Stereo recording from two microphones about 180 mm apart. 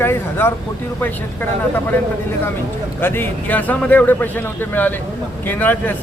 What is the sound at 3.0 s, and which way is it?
A man's voice, 10° left (ahead or behind).